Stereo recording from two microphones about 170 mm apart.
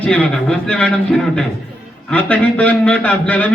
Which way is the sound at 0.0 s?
5° left (ahead or behind).